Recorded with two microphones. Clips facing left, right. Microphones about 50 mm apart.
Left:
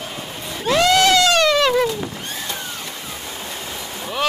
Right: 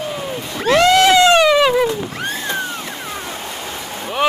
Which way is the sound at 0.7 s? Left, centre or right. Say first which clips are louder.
Right 4 dB; right.